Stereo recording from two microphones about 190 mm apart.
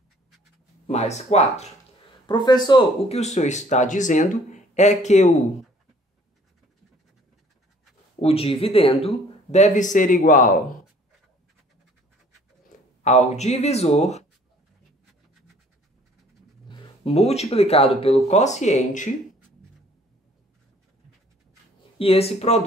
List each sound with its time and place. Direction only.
0.8 s speech: 35° left (ahead or behind)
2.2 s speech: 20° left (ahead or behind); by 5.3 s 35° left (ahead or behind)
8.2 s speech: 30° left (ahead or behind)
13.0 s speech: 35° left (ahead or behind)
16.6 s speech: 30° left (ahead or behind)
21.9 s speech: 30° left (ahead or behind)